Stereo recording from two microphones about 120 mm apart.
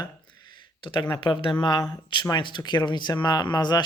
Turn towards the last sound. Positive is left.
turn(degrees=35)  # may be behind; listen again after turning